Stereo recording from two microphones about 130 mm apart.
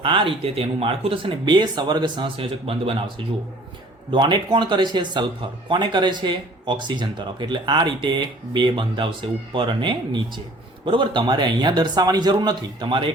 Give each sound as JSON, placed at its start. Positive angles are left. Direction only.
{"t": 0.0, "sound": "speech", "side_deg": -40}
{"t": 4.1, "sound": "speech", "side_deg": -35}